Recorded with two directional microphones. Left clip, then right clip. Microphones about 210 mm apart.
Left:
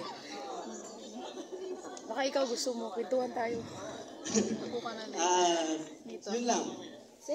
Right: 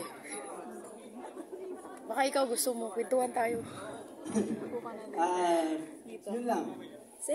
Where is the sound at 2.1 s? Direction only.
25° right (ahead or behind).